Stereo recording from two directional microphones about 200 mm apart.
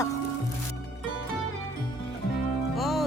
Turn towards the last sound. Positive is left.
turn(degrees=0)  # may be behind; listen again after turning